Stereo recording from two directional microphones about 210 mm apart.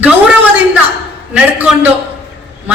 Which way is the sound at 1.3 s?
5° right (ahead or behind).